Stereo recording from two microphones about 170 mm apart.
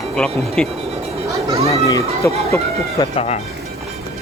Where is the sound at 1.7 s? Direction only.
20° left (ahead or behind).